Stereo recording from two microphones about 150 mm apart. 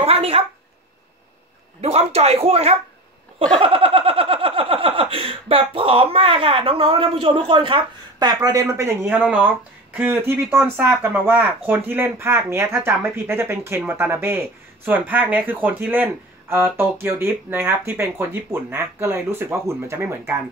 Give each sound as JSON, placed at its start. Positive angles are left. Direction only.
{"t": 0.0, "sound": "a sound", "side_deg": -40}
{"t": 1.8, "sound": "speech", "side_deg": -45}
{"t": 3.5, "sound": "snicker", "side_deg": -35}
{"t": 9.9, "sound": "speech", "side_deg": -15}